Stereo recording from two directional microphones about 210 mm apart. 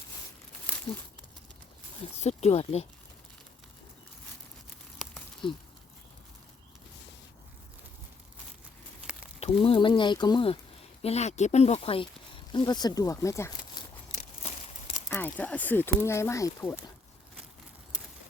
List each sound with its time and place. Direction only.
2.1 s speech: 30° left (ahead or behind)
5.4 s speech: 25° left (ahead or behind)
9.4 s speech: 25° left (ahead or behind)
15.1 s speech: 10° left (ahead or behind)